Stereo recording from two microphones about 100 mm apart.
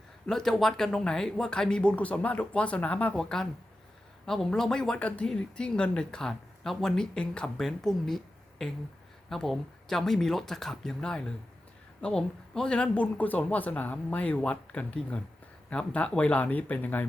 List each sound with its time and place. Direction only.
0.3 s speech: 5° left (ahead or behind)